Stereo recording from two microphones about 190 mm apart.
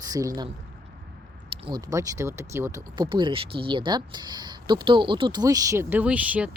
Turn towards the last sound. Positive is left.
turn(degrees=-5)  # may be behind; listen again after turning